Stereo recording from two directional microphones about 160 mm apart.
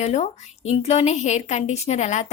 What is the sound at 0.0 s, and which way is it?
A woman's voice, 45° left (ahead or behind).